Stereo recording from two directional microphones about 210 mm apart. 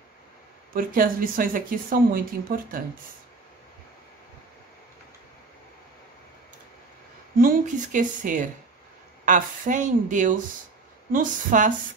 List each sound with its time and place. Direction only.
0.7 s speech: 40° right (ahead or behind)
7.3 s speech: 40° right (ahead or behind)